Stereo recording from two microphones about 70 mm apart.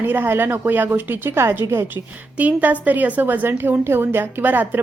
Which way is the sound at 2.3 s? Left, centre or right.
Right.